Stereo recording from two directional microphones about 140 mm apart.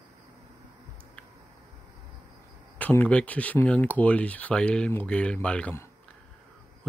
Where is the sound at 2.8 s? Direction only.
10° left (ahead or behind).